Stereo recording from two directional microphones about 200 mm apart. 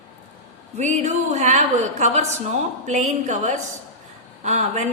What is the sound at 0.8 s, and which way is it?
A woman's voice, 35° right (ahead or behind).